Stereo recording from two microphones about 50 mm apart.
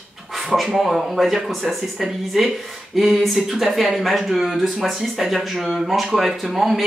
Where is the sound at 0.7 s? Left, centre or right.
Centre.